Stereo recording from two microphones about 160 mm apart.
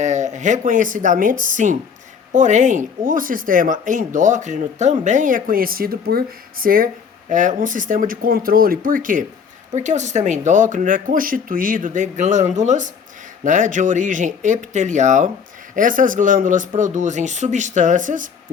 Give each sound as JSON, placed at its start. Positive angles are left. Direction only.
{"t": 0.0, "sound": "speech", "side_deg": -50}